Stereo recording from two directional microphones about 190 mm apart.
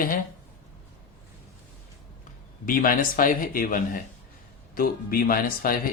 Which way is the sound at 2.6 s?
45° left (ahead or behind).